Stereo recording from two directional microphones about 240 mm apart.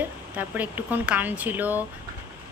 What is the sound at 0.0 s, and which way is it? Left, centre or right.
Speech, centre.